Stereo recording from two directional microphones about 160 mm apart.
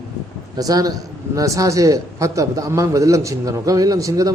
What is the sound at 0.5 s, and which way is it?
A man's voice, 25° right (ahead or behind).